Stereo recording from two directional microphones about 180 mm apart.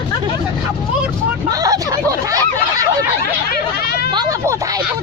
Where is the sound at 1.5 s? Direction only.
20° right (ahead or behind).